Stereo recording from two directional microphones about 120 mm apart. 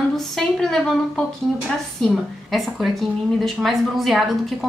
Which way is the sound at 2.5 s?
Centre (ahead or behind).